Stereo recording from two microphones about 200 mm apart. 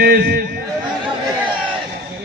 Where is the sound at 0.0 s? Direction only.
50° right (ahead or behind).